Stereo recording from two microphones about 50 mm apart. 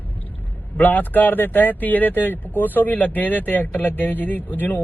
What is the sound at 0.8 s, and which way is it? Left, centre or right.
Speech, left.